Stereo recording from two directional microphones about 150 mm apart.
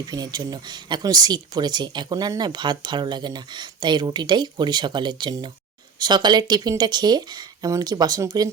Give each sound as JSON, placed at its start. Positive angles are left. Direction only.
{"t": 0.0, "sound": "speech", "side_deg": -25}